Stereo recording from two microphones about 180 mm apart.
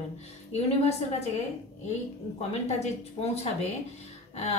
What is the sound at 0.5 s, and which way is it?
Speech, 35° left (ahead or behind).